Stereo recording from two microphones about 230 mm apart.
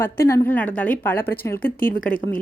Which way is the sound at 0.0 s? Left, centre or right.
Centre.